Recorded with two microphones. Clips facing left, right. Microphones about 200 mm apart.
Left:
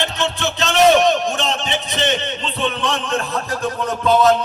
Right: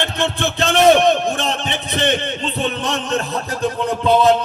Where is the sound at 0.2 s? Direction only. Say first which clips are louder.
Right 2 dB; 55° right (ahead or behind).